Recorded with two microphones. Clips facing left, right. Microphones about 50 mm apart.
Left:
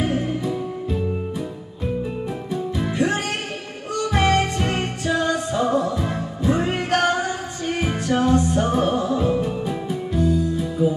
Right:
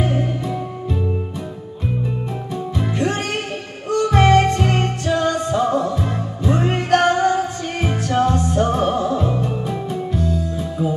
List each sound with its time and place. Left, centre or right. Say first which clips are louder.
0.0 s music: right 1 dB; centre
2.5 s music: even; centre